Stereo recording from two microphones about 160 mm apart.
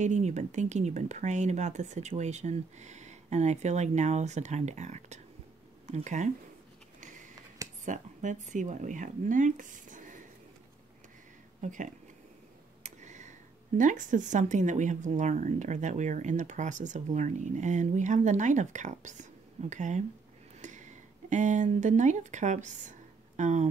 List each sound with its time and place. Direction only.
0.0 s speech: 45° right (ahead or behind)
7.0 s sniff: 55° right (ahead or behind)
7.8 s speech: 50° right (ahead or behind)
11.6 s speech: 50° right (ahead or behind)
13.0 s tick: 50° right (ahead or behind)
13.7 s speech: 55° right (ahead or behind)